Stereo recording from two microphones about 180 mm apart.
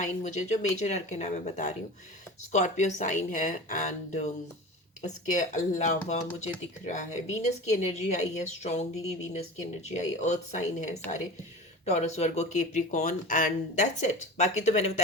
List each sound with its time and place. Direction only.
0.0 s speech: 40° left (ahead or behind)